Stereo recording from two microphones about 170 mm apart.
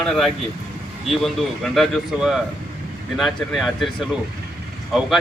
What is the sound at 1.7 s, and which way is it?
Speech, centre (ahead or behind).